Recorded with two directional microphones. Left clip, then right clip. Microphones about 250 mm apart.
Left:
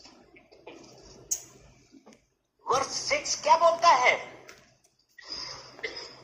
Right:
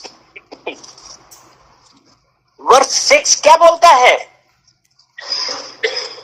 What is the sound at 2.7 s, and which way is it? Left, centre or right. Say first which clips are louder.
Speech: right 18 dB; right.